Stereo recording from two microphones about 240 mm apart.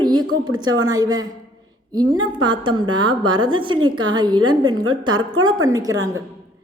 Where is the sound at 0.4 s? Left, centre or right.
Centre.